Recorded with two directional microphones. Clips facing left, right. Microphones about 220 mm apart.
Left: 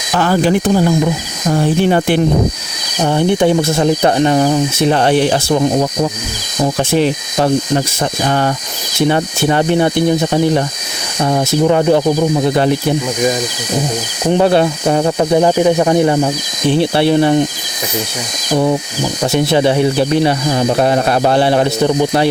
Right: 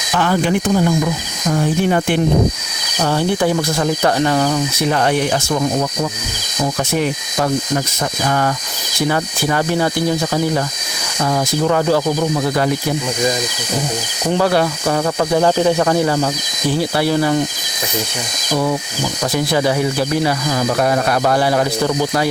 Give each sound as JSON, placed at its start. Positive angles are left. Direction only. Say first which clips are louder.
{"t": 0.1, "sound": "speech", "louder": "left 3 dB", "side_deg": 40}
{"t": 3.0, "sound": "speech", "louder": "left 4 dB", "side_deg": 20}
{"t": 14.3, "sound": "speech", "louder": "left 4 dB", "side_deg": 20}
{"t": 18.5, "sound": "speech", "louder": "left 4 dB", "side_deg": 25}